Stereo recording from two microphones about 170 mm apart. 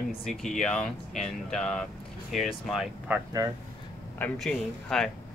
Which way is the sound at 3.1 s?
10° right (ahead or behind).